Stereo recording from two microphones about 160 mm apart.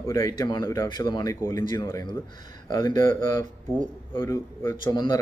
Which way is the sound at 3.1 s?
15° left (ahead or behind).